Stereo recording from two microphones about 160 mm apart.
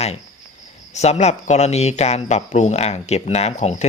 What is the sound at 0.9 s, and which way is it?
Speech, 45° left (ahead or behind).